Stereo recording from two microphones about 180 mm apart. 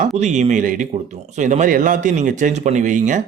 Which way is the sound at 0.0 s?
45° right (ahead or behind).